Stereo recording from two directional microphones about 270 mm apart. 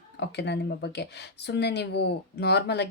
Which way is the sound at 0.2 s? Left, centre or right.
Left.